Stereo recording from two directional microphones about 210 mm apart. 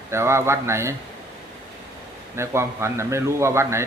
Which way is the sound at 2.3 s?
15° right (ahead or behind).